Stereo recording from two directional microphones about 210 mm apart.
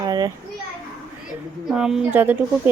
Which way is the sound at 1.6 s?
Centre (ahead or behind).